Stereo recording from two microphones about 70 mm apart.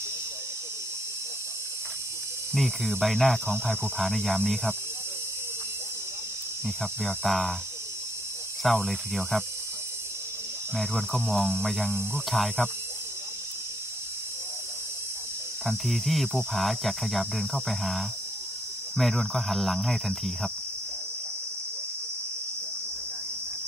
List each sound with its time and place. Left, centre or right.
2.5 s cricket: centre
7.2 s cricket: centre
8.6 s cricket: centre
10.8 s cricket: centre
11.9 s speech: right
12.3 s cricket: centre
15.9 s cricket: centre